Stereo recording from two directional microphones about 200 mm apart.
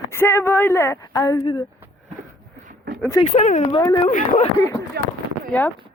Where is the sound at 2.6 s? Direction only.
50° right (ahead or behind).